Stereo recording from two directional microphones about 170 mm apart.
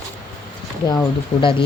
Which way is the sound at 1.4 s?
30° left (ahead or behind).